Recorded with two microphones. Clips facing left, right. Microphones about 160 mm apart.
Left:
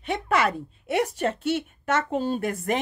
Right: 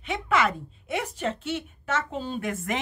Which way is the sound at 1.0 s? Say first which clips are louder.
Left 4 dB; 50° left (ahead or behind).